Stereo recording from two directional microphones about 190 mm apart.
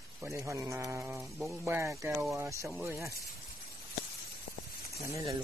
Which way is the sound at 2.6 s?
Centre (ahead or behind).